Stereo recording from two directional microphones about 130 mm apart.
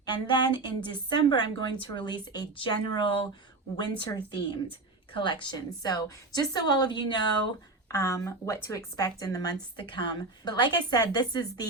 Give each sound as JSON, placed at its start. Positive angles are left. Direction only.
{"t": 0.0, "sound": "speech", "side_deg": 35}
{"t": 7.9, "sound": "speech", "side_deg": 25}